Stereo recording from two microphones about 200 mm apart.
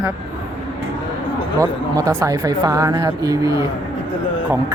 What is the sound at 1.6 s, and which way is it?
Speech, 15° right (ahead or behind).